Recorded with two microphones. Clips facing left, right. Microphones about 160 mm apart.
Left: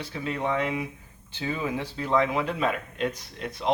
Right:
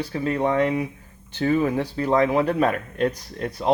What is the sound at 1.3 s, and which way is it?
A man's voice, 55° right (ahead or behind).